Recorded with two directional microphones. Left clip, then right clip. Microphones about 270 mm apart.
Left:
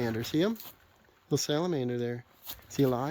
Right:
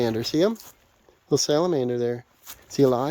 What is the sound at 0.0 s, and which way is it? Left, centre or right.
Speech, right.